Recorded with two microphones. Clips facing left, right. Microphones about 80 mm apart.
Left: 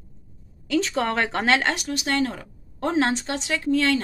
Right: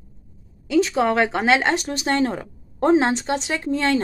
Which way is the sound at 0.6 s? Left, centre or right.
Centre.